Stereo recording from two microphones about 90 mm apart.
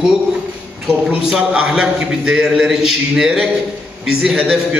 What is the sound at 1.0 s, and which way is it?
A man's voice, 10° right (ahead or behind).